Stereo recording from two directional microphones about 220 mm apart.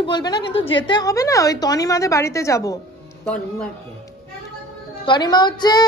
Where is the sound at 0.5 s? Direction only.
60° left (ahead or behind).